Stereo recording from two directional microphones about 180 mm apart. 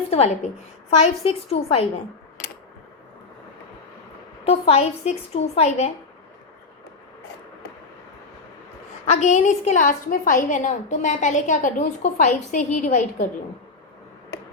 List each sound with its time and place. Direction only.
0.1 s a woman's voice: 35° left (ahead or behind)
4.4 s a woman's voice: 35° left (ahead or behind)
9.0 s a woman's voice: 40° left (ahead or behind)